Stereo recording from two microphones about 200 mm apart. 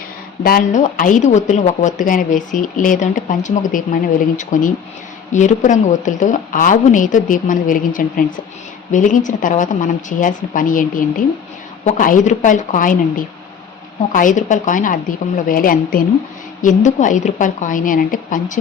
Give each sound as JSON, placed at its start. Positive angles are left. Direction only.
{"t": 0.4, "sound": "a woman's voice", "side_deg": 45}